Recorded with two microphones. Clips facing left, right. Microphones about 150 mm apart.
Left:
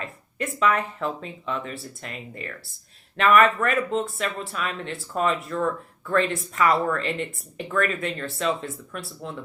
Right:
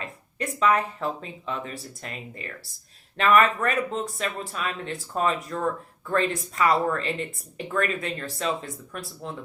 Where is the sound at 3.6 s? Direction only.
40° right (ahead or behind).